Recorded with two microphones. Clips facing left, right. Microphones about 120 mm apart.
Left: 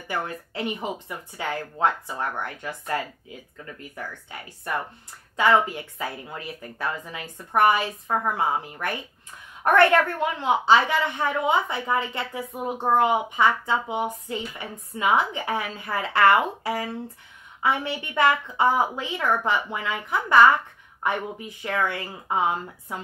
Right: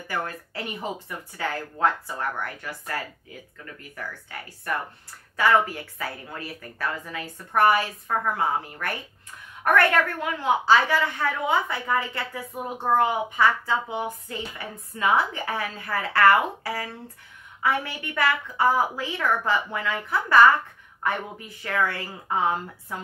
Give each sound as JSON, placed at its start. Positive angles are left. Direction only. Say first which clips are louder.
{"t": 0.1, "sound": "a woman's voice", "louder": "left 1 dB", "side_deg": 20}
{"t": 9.7, "sound": "a woman's voice", "louder": "left 3 dB", "side_deg": 25}